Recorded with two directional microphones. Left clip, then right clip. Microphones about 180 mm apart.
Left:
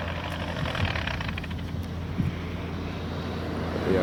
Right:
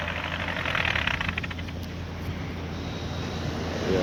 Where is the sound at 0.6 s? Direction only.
15° left (ahead or behind).